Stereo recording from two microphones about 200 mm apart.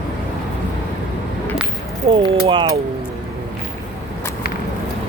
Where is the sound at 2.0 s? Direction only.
30° right (ahead or behind).